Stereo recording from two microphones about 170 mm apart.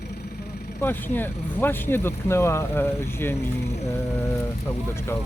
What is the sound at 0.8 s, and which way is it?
Speech, 10° left (ahead or behind).